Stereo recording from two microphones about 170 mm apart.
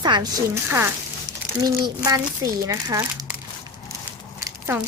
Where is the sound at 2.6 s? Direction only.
20° right (ahead or behind).